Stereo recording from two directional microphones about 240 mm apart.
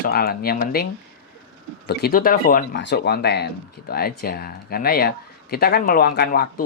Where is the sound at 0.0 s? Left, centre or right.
Left.